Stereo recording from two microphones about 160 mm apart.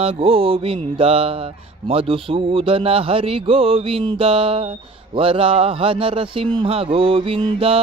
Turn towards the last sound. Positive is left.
turn(degrees=-35)  # may be behind; listen again after turning